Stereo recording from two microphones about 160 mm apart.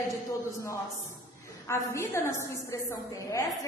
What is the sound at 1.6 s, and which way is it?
A woman's voice, 15° left (ahead or behind).